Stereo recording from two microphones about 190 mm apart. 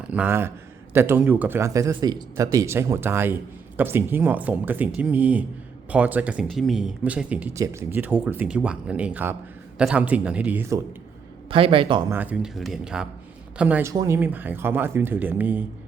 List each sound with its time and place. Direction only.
0.1 s speech: 10° right (ahead or behind)
11.4 s a man's voice: 30° right (ahead or behind)
12.1 s speech: 10° right (ahead or behind)